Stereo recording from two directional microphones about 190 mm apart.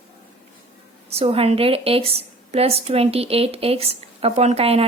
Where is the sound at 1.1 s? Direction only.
30° right (ahead or behind).